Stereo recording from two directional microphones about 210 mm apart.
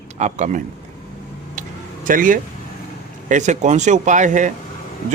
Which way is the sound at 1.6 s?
40° right (ahead or behind).